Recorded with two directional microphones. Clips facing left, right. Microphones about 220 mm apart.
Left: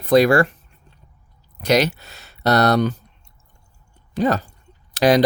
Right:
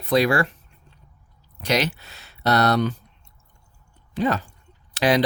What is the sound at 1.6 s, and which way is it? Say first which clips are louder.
Speech: left 5 dB; 40° left (ahead or behind).